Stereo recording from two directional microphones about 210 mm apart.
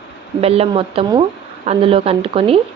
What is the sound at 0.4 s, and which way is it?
Speech, 30° right (ahead or behind).